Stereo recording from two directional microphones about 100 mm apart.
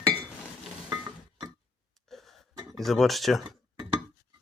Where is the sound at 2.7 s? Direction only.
Centre (ahead or behind).